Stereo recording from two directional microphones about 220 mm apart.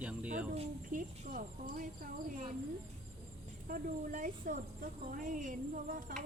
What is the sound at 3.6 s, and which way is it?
Speech, 40° right (ahead or behind).